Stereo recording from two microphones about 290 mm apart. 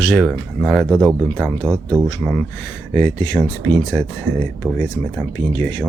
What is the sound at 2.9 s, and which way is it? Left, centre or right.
Speech, centre.